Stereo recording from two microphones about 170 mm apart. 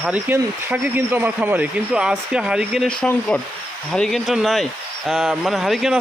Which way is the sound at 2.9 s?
5° left (ahead or behind).